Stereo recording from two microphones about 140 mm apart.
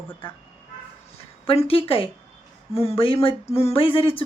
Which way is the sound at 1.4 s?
40° left (ahead or behind).